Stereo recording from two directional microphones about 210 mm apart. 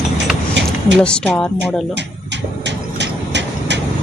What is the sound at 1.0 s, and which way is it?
Speech, 5° left (ahead or behind).